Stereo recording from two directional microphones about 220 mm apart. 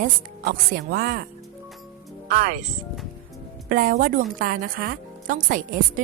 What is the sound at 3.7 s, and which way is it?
Speech, 40° right (ahead or behind).